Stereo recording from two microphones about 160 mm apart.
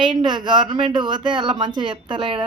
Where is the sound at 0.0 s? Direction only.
30° right (ahead or behind).